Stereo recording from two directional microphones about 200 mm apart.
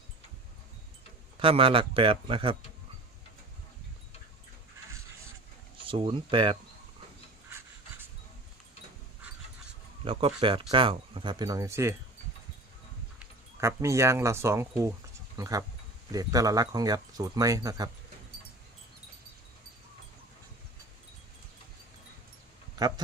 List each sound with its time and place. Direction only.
1.4 s speech: 25° right (ahead or behind)
5.8 s speech: 25° right (ahead or behind)
10.0 s speech: 25° right (ahead or behind)
13.1 s speech: 15° right (ahead or behind)
22.8 s speech: 20° right (ahead or behind)